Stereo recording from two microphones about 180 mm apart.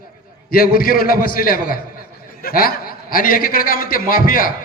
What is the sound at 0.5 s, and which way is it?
A man's voice, 55° left (ahead or behind).